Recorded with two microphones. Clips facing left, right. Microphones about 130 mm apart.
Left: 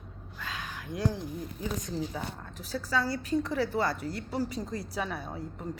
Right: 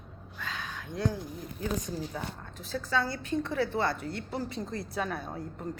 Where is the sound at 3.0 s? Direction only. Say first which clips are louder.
Left 2 dB; 35° left (ahead or behind).